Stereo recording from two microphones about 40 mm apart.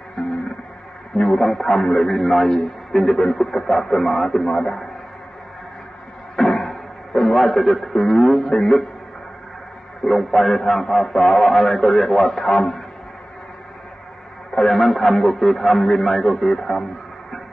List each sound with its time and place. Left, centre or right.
0.2 s music: left
1.1 s a man's voice: left
1.4 s a man's voice: centre
6.3 s a sound: centre
8.5 s a man's voice: centre
10.0 s a man's voice: centre
14.5 s a man's voice: centre
14.8 s a man's voice: centre